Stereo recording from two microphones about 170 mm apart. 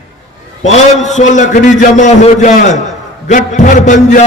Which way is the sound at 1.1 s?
45° left (ahead or behind).